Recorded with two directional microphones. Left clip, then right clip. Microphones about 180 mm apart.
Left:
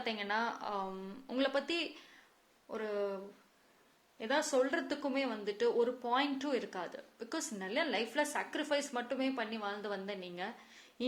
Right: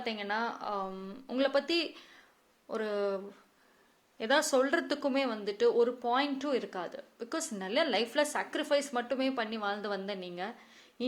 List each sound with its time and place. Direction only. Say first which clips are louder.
0.0 s speech: right 2 dB; 15° right (ahead or behind)
4.2 s speech: right 5 dB; 30° right (ahead or behind)